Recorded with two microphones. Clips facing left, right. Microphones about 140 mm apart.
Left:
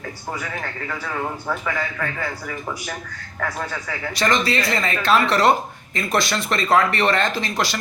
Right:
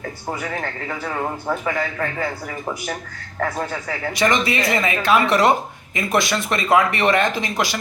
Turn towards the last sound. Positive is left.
turn(degrees=-15)  # may be behind; listen again after turning